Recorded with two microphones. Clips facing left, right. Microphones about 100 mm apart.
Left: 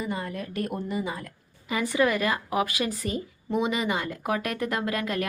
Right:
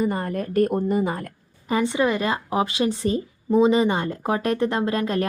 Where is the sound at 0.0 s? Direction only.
45° right (ahead or behind).